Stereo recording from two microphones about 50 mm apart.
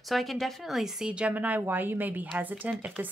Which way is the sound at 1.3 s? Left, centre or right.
Right.